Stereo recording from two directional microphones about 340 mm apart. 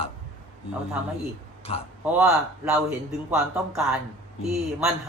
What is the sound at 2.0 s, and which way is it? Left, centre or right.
Speech, centre.